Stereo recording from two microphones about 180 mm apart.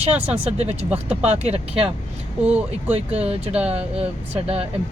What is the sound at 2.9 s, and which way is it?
Speech, 35° right (ahead or behind).